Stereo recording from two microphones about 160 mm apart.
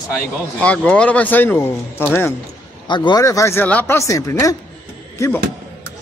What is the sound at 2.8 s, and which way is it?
Speech, 30° left (ahead or behind).